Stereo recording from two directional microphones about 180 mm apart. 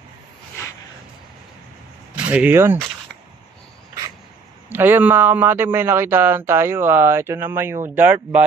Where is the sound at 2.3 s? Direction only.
10° right (ahead or behind).